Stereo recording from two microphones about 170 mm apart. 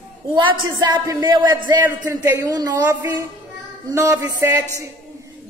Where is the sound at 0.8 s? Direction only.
20° right (ahead or behind).